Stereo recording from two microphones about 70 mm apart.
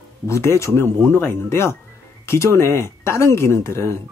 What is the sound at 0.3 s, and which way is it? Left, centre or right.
Speech, left.